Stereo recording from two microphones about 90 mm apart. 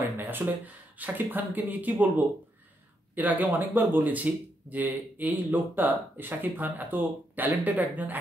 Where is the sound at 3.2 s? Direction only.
20° right (ahead or behind).